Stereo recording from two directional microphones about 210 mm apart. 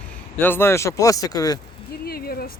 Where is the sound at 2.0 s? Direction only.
45° left (ahead or behind).